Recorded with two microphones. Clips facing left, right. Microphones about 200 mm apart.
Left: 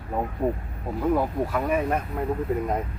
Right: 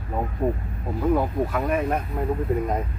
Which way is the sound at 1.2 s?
5° left (ahead or behind).